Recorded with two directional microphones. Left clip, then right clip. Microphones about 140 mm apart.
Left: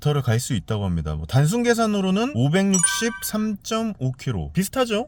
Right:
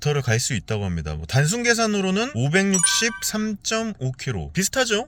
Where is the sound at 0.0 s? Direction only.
45° left (ahead or behind).